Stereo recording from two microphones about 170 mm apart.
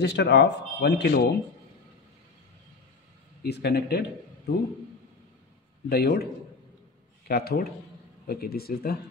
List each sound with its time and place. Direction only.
0.0 s speech: 90° left
3.4 s speech: 75° left (ahead or behind)
5.9 s speech: 65° left (ahead or behind)
7.2 s speech: 65° left (ahead or behind)